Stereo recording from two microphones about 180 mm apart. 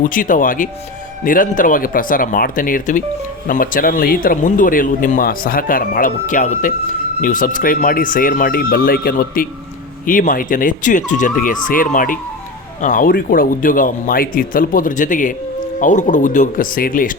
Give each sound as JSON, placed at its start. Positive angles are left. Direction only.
{"t": 0.0, "sound": "speech", "side_deg": 50}